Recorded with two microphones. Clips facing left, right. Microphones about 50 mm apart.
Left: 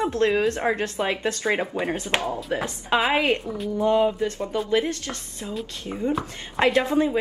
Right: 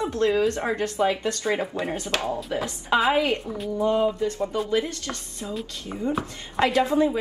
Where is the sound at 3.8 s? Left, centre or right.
Left.